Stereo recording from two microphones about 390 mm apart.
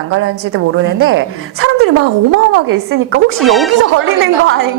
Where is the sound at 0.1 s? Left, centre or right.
Right.